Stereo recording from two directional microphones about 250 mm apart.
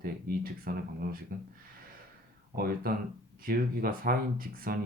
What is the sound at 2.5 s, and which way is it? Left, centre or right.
Speech, right.